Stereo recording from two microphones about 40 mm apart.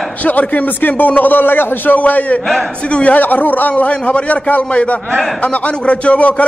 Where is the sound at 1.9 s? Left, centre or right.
Left.